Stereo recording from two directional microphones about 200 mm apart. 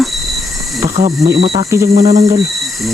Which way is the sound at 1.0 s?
40° right (ahead or behind).